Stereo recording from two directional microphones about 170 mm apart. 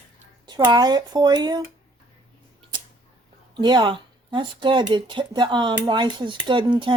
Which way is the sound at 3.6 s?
25° right (ahead or behind).